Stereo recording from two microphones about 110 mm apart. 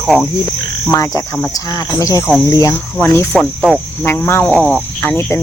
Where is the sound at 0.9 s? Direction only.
25° left (ahead or behind).